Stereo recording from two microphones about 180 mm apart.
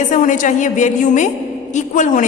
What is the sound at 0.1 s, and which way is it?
A woman's voice, 45° left (ahead or behind).